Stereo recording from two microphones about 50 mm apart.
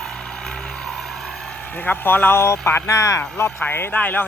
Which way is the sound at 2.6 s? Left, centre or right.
Left.